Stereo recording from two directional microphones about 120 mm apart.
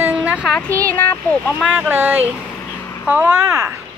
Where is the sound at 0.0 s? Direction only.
15° right (ahead or behind).